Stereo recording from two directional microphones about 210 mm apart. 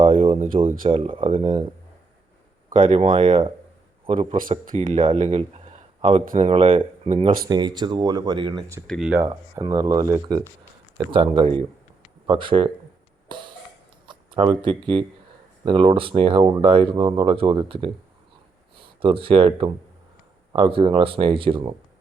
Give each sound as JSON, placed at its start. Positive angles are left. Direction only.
{"t": 0.0, "sound": "a sound", "side_deg": -25}
{"t": 0.5, "sound": "speech", "side_deg": -25}
{"t": 2.7, "sound": "a man's voice", "side_deg": -25}
{"t": 4.4, "sound": "speech", "side_deg": -40}
{"t": 4.9, "sound": "speech", "side_deg": -30}
{"t": 7.4, "sound": "speech", "side_deg": -20}
{"t": 8.9, "sound": "speech", "side_deg": -5}
{"t": 9.2, "sound": "speech", "side_deg": -20}
{"t": 14.1, "sound": "a sound", "side_deg": -25}
{"t": 15.6, "sound": "speech", "side_deg": -25}